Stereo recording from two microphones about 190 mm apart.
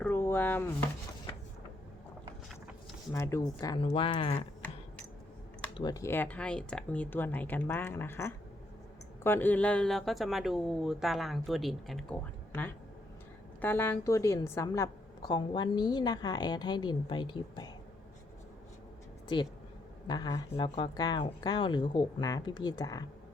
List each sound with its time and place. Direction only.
0.0 s a sound: 10° left (ahead or behind)
3.1 s a woman's voice: 15° left (ahead or behind)
5.7 s a woman's voice: 20° left (ahead or behind)
20.1 s a woman's voice: 20° left (ahead or behind)